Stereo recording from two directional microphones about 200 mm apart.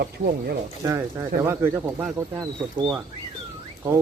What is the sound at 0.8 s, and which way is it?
Speech, 15° right (ahead or behind).